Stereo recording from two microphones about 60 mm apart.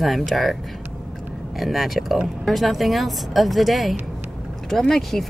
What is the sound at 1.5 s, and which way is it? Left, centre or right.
Speech, centre.